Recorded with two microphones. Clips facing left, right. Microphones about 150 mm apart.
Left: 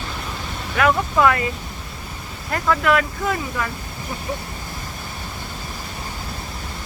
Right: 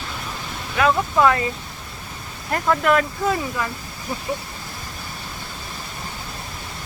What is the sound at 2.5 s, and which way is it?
Speech, 30° right (ahead or behind).